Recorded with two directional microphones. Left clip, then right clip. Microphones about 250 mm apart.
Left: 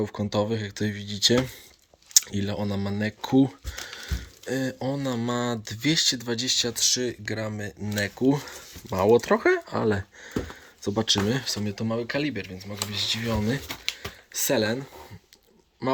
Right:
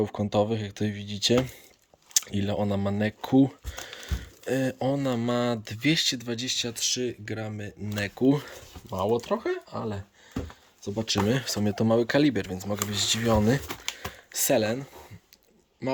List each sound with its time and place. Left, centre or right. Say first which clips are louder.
0.0 s speech: right 1 dB; centre
9.1 s speech: left 7 dB; centre
10.8 s speech: left 3 dB; centre